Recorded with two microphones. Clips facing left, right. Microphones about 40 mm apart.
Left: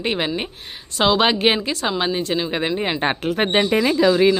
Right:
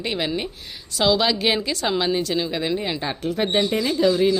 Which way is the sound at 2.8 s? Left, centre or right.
Left.